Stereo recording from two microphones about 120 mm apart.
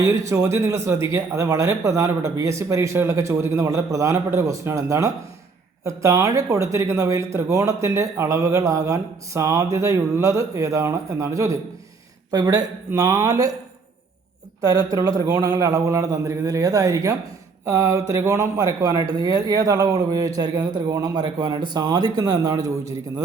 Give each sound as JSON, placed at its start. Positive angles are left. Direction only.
{"t": 0.0, "sound": "a man's voice", "side_deg": -25}
{"t": 14.6, "sound": "a man's voice", "side_deg": -30}